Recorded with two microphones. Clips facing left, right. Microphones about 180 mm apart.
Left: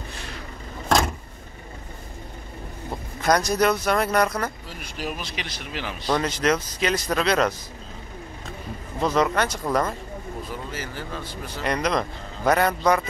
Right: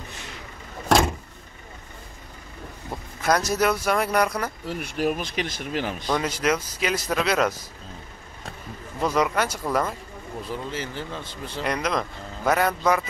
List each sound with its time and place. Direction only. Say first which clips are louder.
3.2 s speech: left 2 dB; 5° right (ahead or behind)
4.6 s speech: right 7 dB; 60° right (ahead or behind)
6.1 s speech: left 2 dB; 10° right (ahead or behind)
9.0 s speech: left 1 dB; 10° right (ahead or behind)
10.7 s speech: right 1 dB; 25° right (ahead or behind)
11.6 s a man's voice: left 2 dB; centre (ahead or behind)